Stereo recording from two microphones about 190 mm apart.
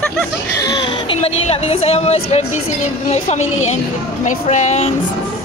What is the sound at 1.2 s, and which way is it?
Speech, 30° left (ahead or behind).